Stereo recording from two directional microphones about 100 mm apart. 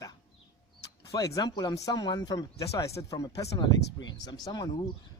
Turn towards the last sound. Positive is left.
turn(degrees=40)  # may be behind; listen again after turning